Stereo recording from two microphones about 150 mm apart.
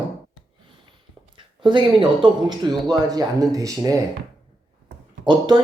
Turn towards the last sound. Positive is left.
turn(degrees=-30)  # may be behind; listen again after turning